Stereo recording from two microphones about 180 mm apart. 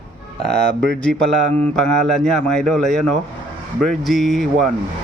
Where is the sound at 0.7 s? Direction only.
75° right (ahead or behind).